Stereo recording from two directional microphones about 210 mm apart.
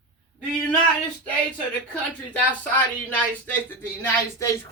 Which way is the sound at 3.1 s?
10° left (ahead or behind).